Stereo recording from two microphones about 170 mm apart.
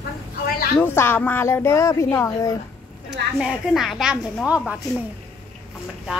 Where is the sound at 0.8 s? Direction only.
15° left (ahead or behind).